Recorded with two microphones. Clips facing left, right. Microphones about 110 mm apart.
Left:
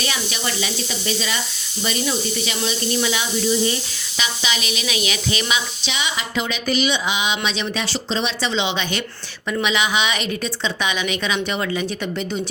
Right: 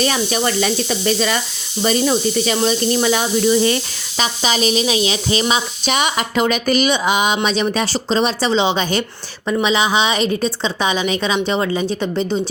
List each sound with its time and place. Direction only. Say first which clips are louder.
0.0 s speech: right 8 dB; 45° right (ahead or behind)
3.5 s speech: right 4 dB; 75° right (ahead or behind)
4.2 s a woman's voice: right 7 dB; 40° right (ahead or behind)
5.9 s a woman's voice: right 7 dB; 55° right (ahead or behind); by 12.4 s 30° right (ahead or behind)